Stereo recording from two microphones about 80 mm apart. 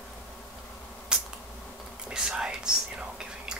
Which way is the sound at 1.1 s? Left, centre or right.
Centre.